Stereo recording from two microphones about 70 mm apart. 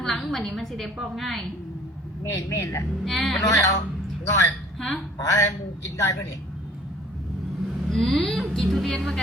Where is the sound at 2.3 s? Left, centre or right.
Left.